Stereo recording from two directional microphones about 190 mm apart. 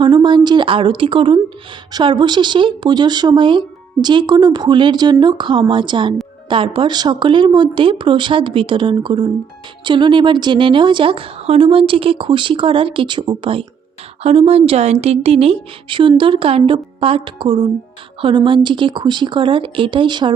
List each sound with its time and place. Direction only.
0.0 s a woman's voice: 25° right (ahead or behind)